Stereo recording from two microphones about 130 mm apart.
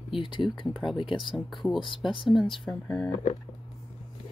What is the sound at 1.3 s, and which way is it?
Speech, 5° left (ahead or behind).